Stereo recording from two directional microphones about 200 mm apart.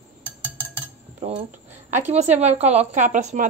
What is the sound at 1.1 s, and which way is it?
Cutlery, 30° right (ahead or behind).